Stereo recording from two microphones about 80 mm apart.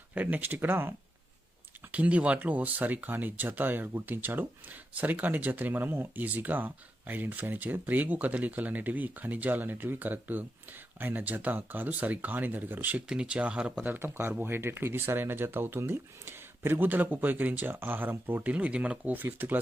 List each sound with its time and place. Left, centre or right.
0.1 s speech: right
1.9 s speech: centre
13.1 s speech: centre
18.5 s speech: centre